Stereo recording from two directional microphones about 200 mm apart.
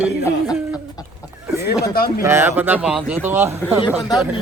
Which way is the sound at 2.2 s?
10° right (ahead or behind).